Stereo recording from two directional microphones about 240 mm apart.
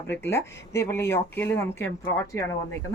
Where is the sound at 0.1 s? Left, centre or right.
Centre.